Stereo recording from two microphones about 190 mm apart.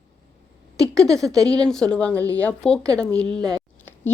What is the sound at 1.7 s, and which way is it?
Speech, 5° left (ahead or behind).